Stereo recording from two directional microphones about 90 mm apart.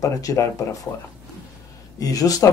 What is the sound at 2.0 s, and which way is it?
Speech, 45° left (ahead or behind).